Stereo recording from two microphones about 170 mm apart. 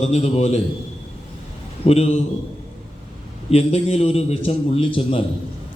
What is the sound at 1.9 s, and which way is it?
Speech, 35° left (ahead or behind).